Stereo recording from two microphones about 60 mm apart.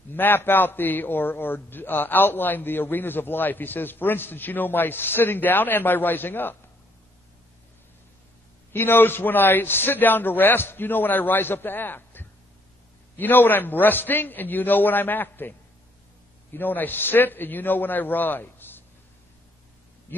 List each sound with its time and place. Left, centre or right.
0.1 s a man's voice: left
8.7 s a man's voice: left
16.5 s a man's voice: left